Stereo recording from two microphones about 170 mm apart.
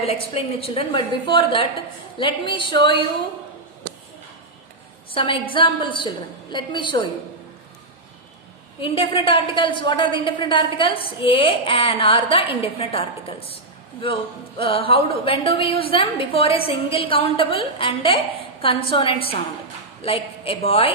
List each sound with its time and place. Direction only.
0.0 s a woman's voice: 35° left (ahead or behind)
5.1 s a woman's voice: 30° left (ahead or behind)
8.8 s a woman's voice: 30° left (ahead or behind)
14.6 s a woman's voice: 30° left (ahead or behind)